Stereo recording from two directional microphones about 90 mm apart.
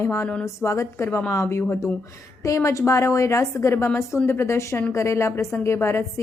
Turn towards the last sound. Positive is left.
turn(degrees=30)  # may be behind; listen again after turning